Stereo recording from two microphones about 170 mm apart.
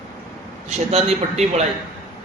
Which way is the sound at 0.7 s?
40° right (ahead or behind).